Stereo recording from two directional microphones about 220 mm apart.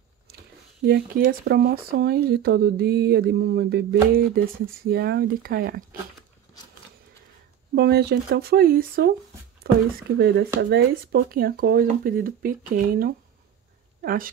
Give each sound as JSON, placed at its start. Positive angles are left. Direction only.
{"t": 0.8, "sound": "speech", "side_deg": -50}
{"t": 7.7, "sound": "speech", "side_deg": -50}